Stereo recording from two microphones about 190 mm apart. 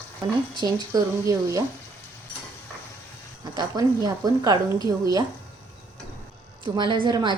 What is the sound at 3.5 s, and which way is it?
A woman's voice, 20° right (ahead or behind).